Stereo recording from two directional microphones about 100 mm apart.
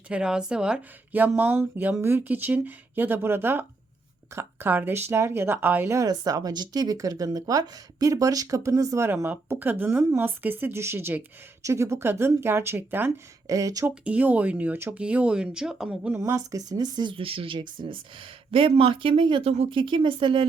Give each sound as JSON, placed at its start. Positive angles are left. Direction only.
{"t": 0.1, "sound": "speech", "side_deg": -10}
{"t": 6.0, "sound": "speech", "side_deg": -35}
{"t": 9.0, "sound": "speech", "side_deg": -20}
{"t": 13.5, "sound": "speech", "side_deg": -35}
{"t": 13.8, "sound": "speech", "side_deg": -15}
{"t": 16.1, "sound": "speech", "side_deg": -30}